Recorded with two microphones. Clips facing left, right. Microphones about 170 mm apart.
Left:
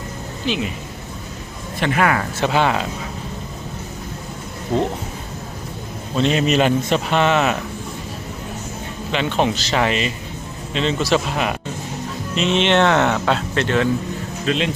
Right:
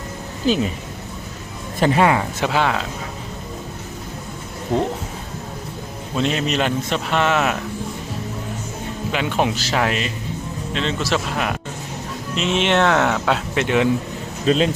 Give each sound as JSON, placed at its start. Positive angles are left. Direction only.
{"t": 0.4, "sound": "speech", "side_deg": -40}
{"t": 1.8, "sound": "speech", "side_deg": -30}
{"t": 2.4, "sound": "speech", "side_deg": 0}
{"t": 6.1, "sound": "speech", "side_deg": 0}
{"t": 9.1, "sound": "speech", "side_deg": -5}
{"t": 14.4, "sound": "speech", "side_deg": -40}